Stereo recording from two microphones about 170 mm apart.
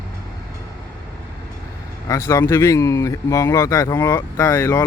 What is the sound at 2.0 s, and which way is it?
Speech, 15° left (ahead or behind).